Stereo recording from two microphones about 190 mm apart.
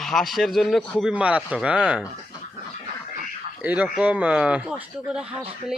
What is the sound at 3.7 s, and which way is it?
Speech, 5° right (ahead or behind).